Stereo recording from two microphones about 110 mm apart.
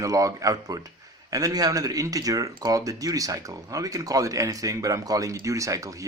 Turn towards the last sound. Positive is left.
turn(degrees=-30)  # may be behind; listen again after turning